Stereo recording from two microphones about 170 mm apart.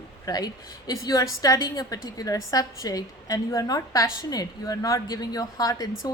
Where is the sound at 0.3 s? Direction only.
20° left (ahead or behind).